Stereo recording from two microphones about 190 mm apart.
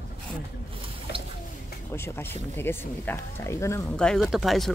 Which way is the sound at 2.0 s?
10° left (ahead or behind).